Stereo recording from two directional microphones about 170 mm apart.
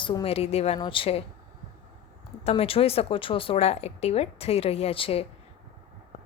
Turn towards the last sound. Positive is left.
turn(degrees=35)  # may be behind; listen again after turning